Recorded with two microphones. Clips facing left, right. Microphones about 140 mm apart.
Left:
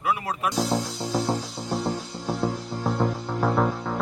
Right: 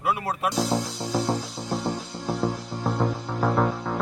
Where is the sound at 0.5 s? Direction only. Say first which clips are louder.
Even; centre (ahead or behind).